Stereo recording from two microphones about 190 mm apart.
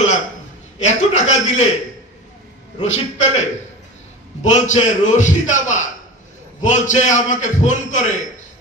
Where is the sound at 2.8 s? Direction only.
40° left (ahead or behind).